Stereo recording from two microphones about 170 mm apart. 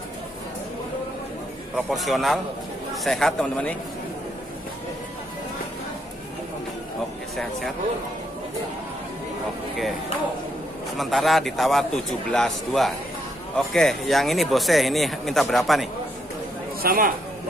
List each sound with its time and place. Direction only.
1.8 s speech: centre (ahead or behind)
11.0 s speech: centre (ahead or behind)
16.8 s speech: 60° right (ahead or behind)